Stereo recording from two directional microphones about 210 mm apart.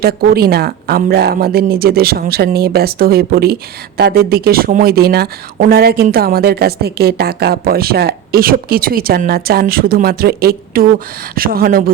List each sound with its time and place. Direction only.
0.0 s speech: 45° right (ahead or behind)